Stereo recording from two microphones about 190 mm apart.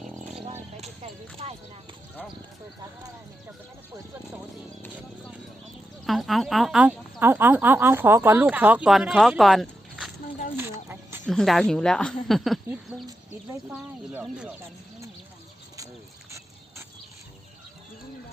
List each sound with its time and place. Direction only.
0.8 s a sound: 30° right (ahead or behind)
6.1 s speech: centre (ahead or behind)
10.6 s snake: 10° right (ahead or behind)
11.3 s speech: centre (ahead or behind)
12.6 s a sound: 5° right (ahead or behind)
13.7 s speech: 10° right (ahead or behind)